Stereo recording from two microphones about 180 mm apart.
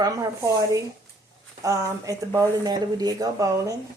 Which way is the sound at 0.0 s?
20° right (ahead or behind).